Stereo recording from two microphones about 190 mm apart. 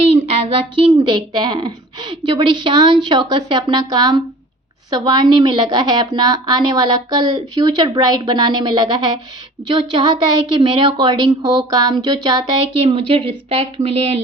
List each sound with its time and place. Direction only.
0.3 s a woman's voice: 30° right (ahead or behind)